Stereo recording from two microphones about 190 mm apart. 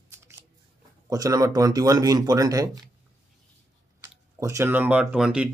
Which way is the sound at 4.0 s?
15° right (ahead or behind).